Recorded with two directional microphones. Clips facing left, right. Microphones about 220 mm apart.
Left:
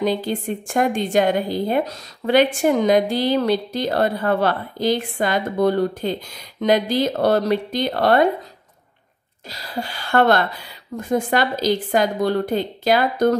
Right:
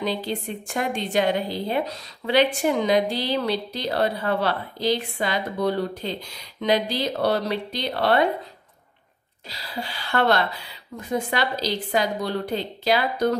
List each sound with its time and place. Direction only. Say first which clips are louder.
0.0 s a woman's voice: left 5 dB; 50° left (ahead or behind)
9.5 s a woman's voice: left 4 dB; 45° left (ahead or behind)